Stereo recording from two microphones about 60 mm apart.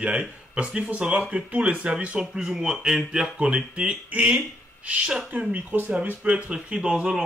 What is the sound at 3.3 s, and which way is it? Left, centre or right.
Speech, centre.